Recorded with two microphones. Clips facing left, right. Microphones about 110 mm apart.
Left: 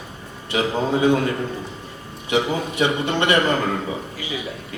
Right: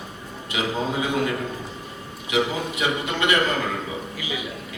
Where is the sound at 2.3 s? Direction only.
30° left (ahead or behind).